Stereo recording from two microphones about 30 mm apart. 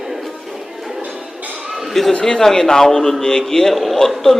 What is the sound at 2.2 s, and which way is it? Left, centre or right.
A man's voice, centre.